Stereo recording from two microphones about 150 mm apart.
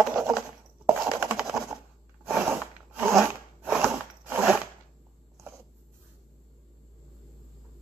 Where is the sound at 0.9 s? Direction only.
15° right (ahead or behind).